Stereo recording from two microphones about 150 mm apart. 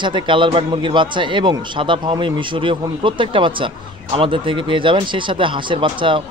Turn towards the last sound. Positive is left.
turn(degrees=-35)  # may be behind; listen again after turning